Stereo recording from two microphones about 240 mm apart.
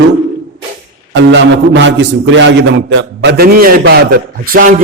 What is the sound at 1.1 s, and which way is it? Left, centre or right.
A man's voice, right.